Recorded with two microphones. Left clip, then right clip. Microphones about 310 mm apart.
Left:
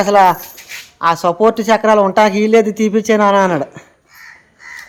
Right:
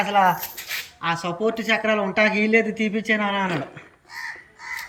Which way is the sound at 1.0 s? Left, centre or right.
Centre.